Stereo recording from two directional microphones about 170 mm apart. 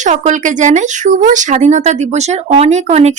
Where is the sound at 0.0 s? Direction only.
45° right (ahead or behind).